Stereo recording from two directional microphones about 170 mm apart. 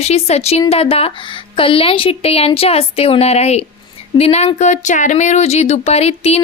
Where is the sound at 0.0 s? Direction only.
40° left (ahead or behind).